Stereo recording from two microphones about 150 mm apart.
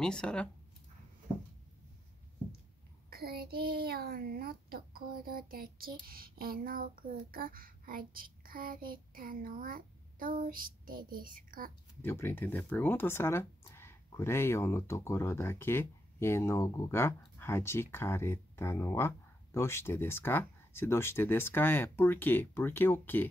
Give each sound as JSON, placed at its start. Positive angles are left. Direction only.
{"t": 0.0, "sound": "speech", "side_deg": 5}
{"t": 3.1, "sound": "a child's voice", "side_deg": -90}
{"t": 12.0, "sound": "speech", "side_deg": 15}